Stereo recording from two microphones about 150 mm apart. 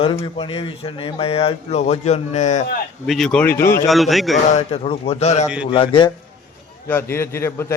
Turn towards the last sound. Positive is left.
turn(degrees=15)  # may be behind; listen again after turning